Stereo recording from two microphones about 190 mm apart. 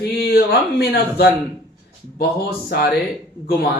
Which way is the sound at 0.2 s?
55° left (ahead or behind).